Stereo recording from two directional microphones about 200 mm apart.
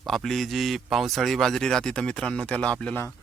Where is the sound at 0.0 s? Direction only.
Centre (ahead or behind).